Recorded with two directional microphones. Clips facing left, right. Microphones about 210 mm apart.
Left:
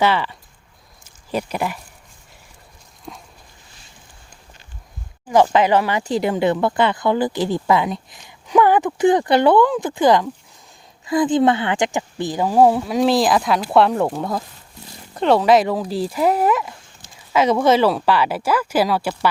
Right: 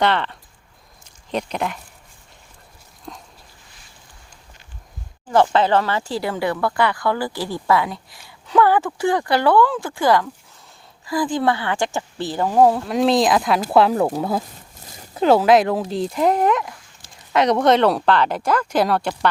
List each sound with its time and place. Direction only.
0.0 s speech: 5° left (ahead or behind)
3.1 s dog: 5° left (ahead or behind)
5.3 s speech: 15° left (ahead or behind)